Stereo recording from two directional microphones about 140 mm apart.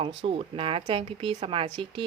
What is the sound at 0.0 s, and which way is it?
Speech, 40° right (ahead or behind).